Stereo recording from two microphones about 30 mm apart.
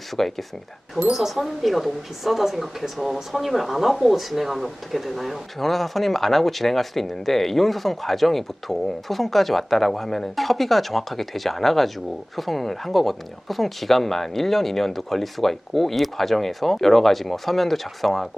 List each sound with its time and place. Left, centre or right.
0.1 s speech: centre
1.1 s speech: centre